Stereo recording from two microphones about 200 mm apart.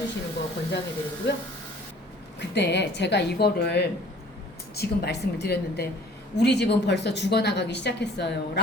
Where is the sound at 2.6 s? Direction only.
60° left (ahead or behind).